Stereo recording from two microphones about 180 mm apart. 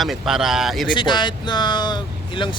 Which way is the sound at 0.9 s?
25° left (ahead or behind).